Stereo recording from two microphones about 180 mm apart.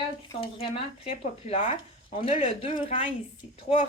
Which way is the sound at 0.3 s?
30° left (ahead or behind).